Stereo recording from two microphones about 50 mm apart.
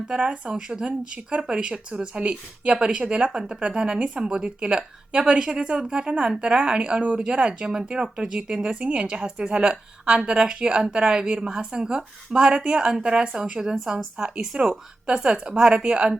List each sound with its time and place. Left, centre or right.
0.1 s a woman's voice: centre
14.4 s a woman's voice: centre